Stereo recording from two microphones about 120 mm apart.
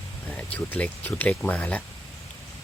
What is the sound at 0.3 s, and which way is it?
Speech, 10° left (ahead or behind).